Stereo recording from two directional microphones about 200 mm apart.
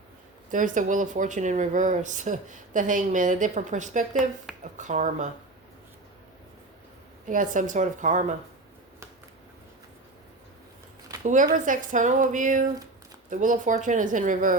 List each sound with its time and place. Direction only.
0.5 s speech: 40° right (ahead or behind)
7.3 s speech: 40° right (ahead or behind)
11.2 s speech: 40° right (ahead or behind)